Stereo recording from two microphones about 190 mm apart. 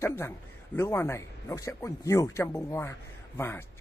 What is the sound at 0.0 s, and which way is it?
A man's voice, 10° left (ahead or behind).